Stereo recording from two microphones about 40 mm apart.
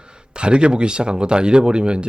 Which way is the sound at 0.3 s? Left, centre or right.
Right.